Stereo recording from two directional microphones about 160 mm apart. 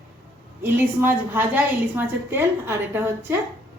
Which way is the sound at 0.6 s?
10° right (ahead or behind).